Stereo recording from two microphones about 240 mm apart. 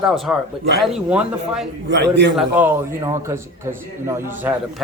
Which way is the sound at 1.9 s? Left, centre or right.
Right.